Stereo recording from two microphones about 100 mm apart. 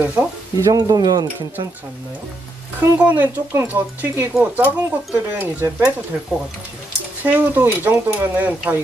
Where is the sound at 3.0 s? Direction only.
15° right (ahead or behind).